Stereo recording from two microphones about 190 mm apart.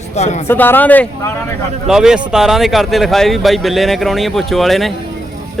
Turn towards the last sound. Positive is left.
turn(degrees=0)  # may be behind; listen again after turning